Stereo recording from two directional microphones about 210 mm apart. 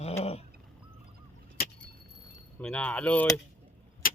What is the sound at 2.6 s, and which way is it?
Speech, 5° left (ahead or behind).